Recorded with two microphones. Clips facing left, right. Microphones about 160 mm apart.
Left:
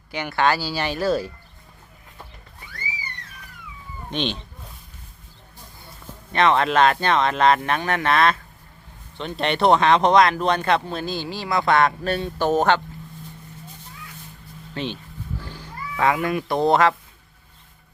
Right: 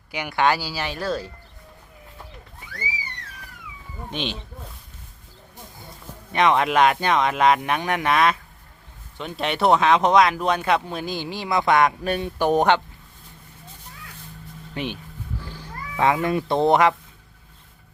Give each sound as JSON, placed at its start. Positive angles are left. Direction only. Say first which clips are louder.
{"t": 0.1, "sound": "speech", "louder": "even", "side_deg": -10}
{"t": 0.7, "sound": "speech", "louder": "left 4 dB", "side_deg": 0}
{"t": 4.1, "sound": "speech", "louder": "left 3 dB", "side_deg": -5}
{"t": 6.3, "sound": "speech", "louder": "even", "side_deg": -15}
{"t": 14.8, "sound": "speech", "louder": "even", "side_deg": -15}
{"t": 16.0, "sound": "speech", "louder": "right 1 dB", "side_deg": -20}